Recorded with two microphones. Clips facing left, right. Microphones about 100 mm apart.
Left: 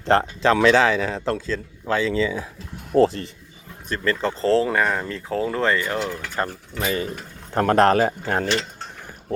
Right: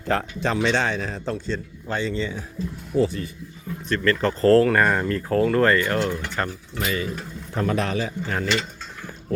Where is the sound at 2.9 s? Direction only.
75° left (ahead or behind).